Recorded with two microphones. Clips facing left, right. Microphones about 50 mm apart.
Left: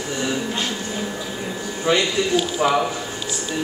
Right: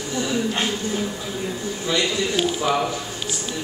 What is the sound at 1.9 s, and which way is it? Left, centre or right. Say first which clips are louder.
Speech: left 4 dB; left.